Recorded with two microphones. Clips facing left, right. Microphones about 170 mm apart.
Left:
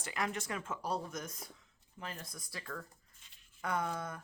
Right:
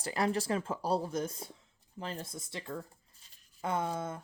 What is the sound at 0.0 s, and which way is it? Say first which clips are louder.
Speech: right 7 dB; 35° right (ahead or behind).